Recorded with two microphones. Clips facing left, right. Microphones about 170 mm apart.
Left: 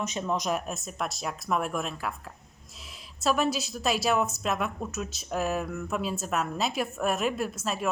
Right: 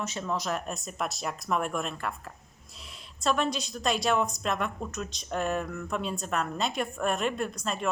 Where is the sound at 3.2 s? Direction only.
5° left (ahead or behind).